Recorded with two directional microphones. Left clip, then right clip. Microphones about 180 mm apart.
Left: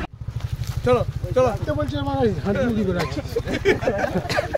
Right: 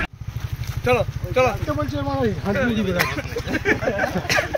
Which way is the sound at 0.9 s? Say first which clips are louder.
Even; 85° left.